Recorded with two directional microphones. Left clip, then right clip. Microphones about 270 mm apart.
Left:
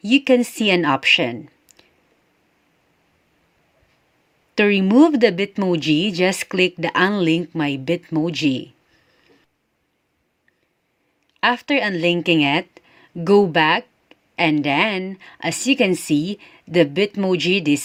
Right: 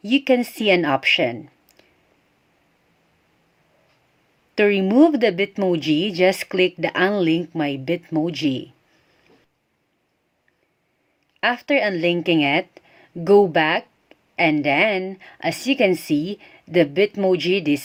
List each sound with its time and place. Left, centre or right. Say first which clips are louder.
0.1 s speech: left 2 dB; centre
4.5 s speech: left 1 dB; left
11.3 s speech: left 1 dB; left